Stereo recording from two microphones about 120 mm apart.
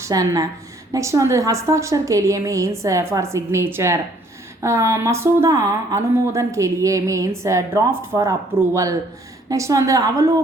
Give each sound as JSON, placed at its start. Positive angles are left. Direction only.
{"t": 0.0, "sound": "a woman's voice", "side_deg": -30}